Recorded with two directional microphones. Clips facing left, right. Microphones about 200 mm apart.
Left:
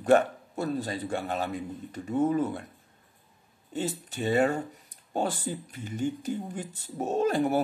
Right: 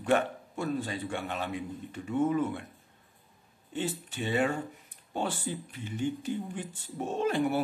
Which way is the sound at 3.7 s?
40° left (ahead or behind).